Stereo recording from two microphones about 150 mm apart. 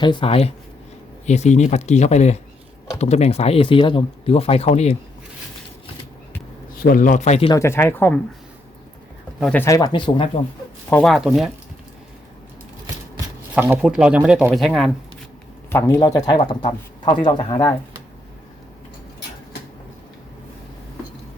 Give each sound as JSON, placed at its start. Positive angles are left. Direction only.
{"t": 0.0, "sound": "speech", "side_deg": 35}
{"t": 6.8, "sound": "a man's voice", "side_deg": 65}
{"t": 7.5, "sound": "speech", "side_deg": 15}
{"t": 9.5, "sound": "speech", "side_deg": 15}
{"t": 9.7, "sound": "speech", "side_deg": 30}
{"t": 11.0, "sound": "speech", "side_deg": 0}
{"t": 13.6, "sound": "speech", "side_deg": -10}
{"t": 16.0, "sound": "speech", "side_deg": 25}